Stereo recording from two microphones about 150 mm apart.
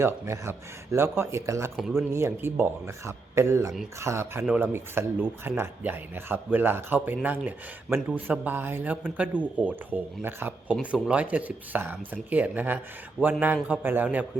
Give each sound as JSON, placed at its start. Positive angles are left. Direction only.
{"t": 0.0, "sound": "speech", "side_deg": -20}
{"t": 1.7, "sound": "speech", "side_deg": 0}
{"t": 2.0, "sound": "speech", "side_deg": -15}
{"t": 10.8, "sound": "speech", "side_deg": 0}